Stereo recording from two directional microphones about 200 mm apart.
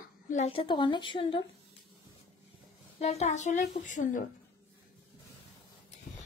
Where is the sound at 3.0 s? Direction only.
35° left (ahead or behind).